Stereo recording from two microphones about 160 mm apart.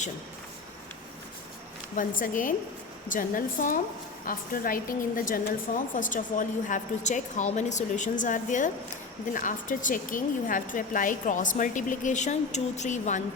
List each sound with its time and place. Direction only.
2.0 s a woman's voice: 55° left (ahead or behind)